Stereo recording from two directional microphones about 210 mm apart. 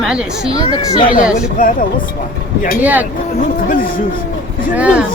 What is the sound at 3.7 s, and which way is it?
Speech, 40° left (ahead or behind).